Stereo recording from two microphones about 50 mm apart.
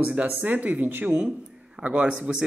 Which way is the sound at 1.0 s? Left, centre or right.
Right.